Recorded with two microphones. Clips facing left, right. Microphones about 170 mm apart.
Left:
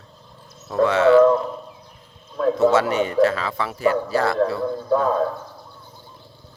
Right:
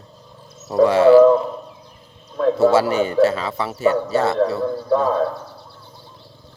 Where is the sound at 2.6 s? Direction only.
30° right (ahead or behind).